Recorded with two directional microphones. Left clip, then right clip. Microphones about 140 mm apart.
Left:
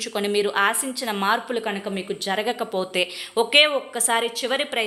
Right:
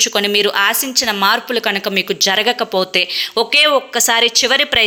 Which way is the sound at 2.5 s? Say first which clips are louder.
Right 10 dB; 15° right (ahead or behind).